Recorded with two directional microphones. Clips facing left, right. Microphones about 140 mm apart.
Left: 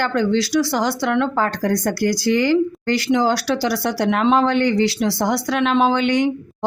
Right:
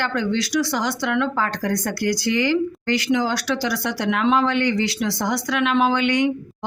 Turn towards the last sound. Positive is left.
turn(degrees=30)  # may be behind; listen again after turning